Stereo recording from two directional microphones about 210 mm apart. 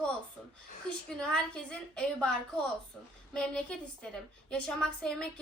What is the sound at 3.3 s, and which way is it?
A woman's voice, 5° left (ahead or behind).